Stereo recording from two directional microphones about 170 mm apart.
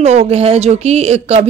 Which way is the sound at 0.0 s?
40° right (ahead or behind).